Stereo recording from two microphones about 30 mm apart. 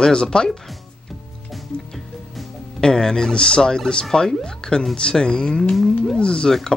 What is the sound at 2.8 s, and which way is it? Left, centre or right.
Speech, left.